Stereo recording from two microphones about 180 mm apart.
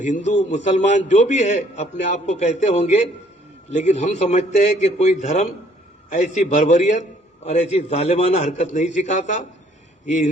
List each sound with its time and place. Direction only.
0.3 s a man's voice: 40° left (ahead or behind)